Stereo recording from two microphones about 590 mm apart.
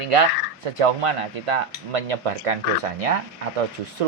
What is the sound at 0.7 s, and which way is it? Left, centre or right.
Cutlery, right.